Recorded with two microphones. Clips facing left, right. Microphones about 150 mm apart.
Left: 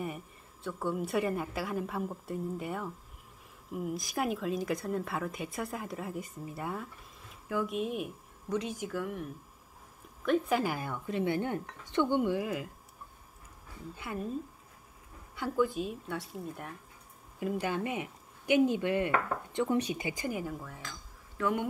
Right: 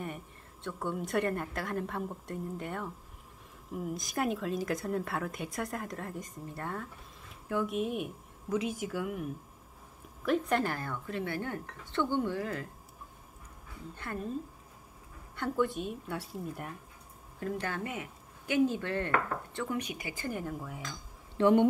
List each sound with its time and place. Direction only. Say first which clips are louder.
0.0 s speech: left 2 dB; 5° left (ahead or behind)
13.9 s speech: left 1 dB; 10° left (ahead or behind)
15.3 s speech: left 1 dB; centre (ahead or behind)
17.4 s speech: left 3 dB; 10° left (ahead or behind); by 20.1 s 30° left (ahead or behind)
20.1 s speech: left 2 dB; 15° left (ahead or behind)
20.5 s speech: right 2 dB; 10° right (ahead or behind)
21.4 s speech: right 8 dB; 30° right (ahead or behind)